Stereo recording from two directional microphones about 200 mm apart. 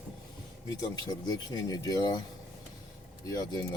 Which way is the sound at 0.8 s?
20° left (ahead or behind).